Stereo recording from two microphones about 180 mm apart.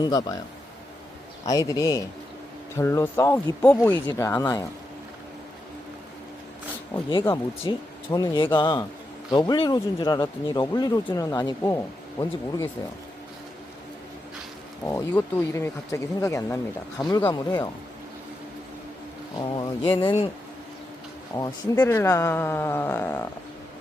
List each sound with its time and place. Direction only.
0.0 s speech: 20° left (ahead or behind)
1.5 s speech: 20° left (ahead or behind)
7.7 s speech: 25° left (ahead or behind)
14.8 s speech: 15° left (ahead or behind)
19.4 s speech: 25° left (ahead or behind)
21.3 s speech: 20° left (ahead or behind)